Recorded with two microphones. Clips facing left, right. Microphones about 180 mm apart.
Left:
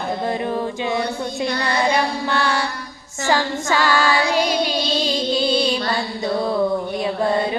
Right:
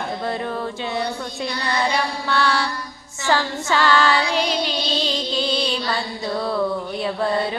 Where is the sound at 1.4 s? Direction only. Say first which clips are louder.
Left 3 dB; 50° left (ahead or behind).